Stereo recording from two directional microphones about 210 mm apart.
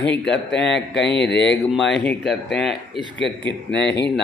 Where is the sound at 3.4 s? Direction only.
55° left (ahead or behind).